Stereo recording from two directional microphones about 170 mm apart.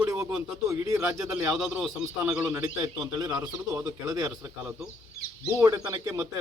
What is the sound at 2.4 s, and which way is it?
Speech, 15° right (ahead or behind).